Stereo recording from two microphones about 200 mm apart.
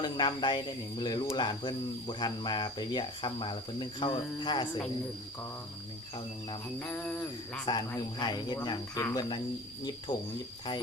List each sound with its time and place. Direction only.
0.0 s speech: 25° left (ahead or behind)
6.7 s a sound: 5° left (ahead or behind)
7.6 s speech: 20° left (ahead or behind)